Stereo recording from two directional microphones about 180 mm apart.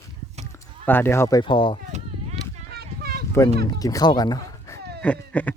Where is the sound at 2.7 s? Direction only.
60° right (ahead or behind).